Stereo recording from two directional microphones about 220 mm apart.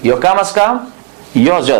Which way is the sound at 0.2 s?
20° right (ahead or behind).